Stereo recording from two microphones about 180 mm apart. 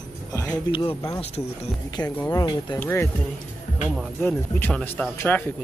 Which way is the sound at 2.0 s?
10° left (ahead or behind).